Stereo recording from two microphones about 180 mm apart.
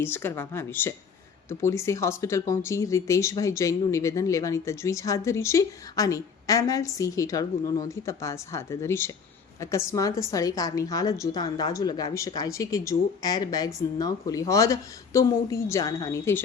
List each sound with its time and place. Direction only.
0.0 s a woman's voice: 10° left (ahead or behind)